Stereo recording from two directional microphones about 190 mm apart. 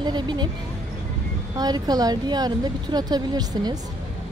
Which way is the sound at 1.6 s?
20° right (ahead or behind).